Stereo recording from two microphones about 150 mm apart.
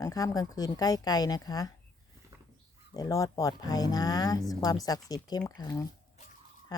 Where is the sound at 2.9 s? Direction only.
25° left (ahead or behind).